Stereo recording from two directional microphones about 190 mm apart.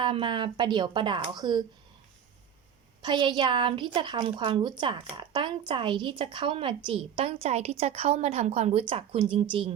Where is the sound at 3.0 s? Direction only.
25° right (ahead or behind).